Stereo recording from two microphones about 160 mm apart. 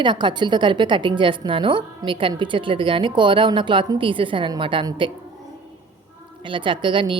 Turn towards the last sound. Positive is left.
turn(degrees=-30)  # may be behind; listen again after turning